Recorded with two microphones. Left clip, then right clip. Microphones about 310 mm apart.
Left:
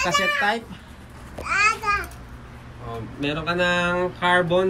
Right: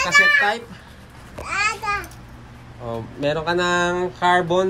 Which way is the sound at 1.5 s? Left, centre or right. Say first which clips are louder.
Left 2 dB; right.